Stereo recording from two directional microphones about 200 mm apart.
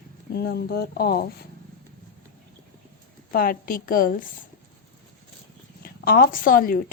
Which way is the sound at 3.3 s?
45° left (ahead or behind).